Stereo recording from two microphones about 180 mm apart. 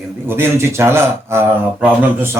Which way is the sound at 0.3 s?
10° right (ahead or behind).